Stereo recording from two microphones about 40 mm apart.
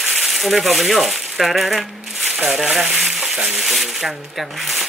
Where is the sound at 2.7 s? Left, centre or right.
Centre.